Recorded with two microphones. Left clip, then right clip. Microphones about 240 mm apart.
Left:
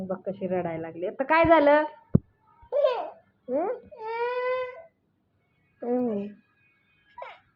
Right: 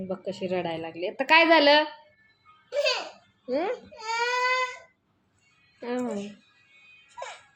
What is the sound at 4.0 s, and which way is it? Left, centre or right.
Crying, centre.